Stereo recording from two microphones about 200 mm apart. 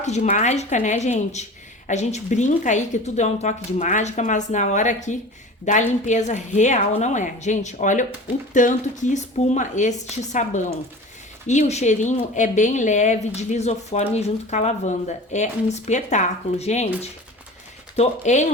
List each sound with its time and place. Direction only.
0.0 s speech: 35° left (ahead or behind)